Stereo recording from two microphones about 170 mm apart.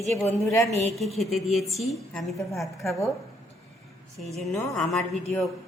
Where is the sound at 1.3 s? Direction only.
Centre (ahead or behind).